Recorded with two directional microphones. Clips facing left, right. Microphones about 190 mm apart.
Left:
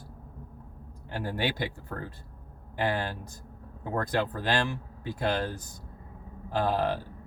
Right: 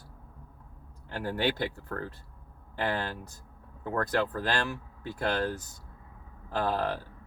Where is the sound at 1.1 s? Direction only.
15° left (ahead or behind).